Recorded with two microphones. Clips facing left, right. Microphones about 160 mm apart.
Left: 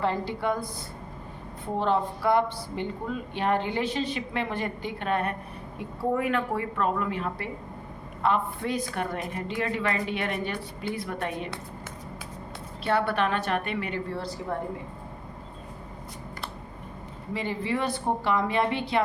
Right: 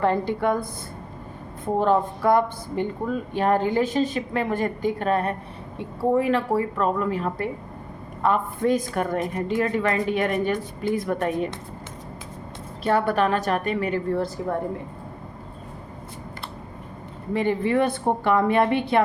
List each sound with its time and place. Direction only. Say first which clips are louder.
0.0 s speech: right 6 dB; 50° right (ahead or behind)
12.8 s speech: right 4 dB; 40° right (ahead or behind)
17.3 s speech: right 8 dB; 55° right (ahead or behind)